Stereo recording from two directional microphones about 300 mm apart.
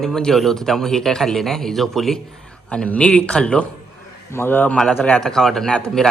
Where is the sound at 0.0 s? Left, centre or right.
Centre.